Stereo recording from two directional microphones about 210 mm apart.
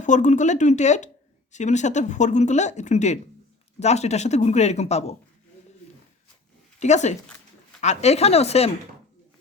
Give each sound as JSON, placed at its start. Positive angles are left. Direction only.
{"t": 0.0, "sound": "speech", "side_deg": 35}
{"t": 6.7, "sound": "speech", "side_deg": 35}